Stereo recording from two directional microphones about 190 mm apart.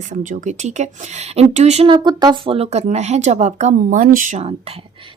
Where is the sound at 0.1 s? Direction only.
40° right (ahead or behind).